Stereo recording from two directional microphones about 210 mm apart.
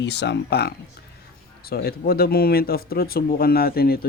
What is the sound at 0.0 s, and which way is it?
Speech, 55° left (ahead or behind).